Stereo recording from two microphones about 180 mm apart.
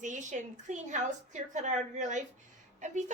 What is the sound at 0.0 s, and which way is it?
A woman's voice, 45° right (ahead or behind).